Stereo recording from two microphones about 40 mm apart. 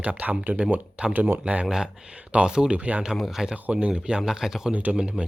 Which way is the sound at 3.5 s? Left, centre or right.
Right.